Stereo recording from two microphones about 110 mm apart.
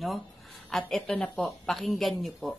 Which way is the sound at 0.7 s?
5° left (ahead or behind).